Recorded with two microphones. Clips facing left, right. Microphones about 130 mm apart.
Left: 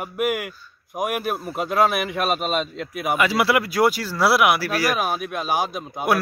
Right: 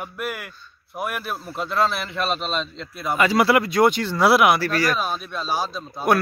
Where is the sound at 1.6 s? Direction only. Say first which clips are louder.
Left 3 dB; 50° left (ahead or behind).